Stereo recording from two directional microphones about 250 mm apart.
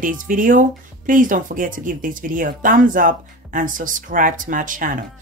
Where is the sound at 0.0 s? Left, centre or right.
Right.